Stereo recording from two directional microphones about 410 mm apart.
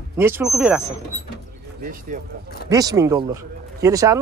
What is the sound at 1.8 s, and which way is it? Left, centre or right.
Speech, right.